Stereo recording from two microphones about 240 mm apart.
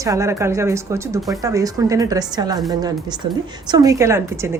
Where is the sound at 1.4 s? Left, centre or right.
Centre.